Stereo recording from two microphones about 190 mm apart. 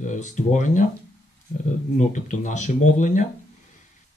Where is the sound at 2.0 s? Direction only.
40° left (ahead or behind).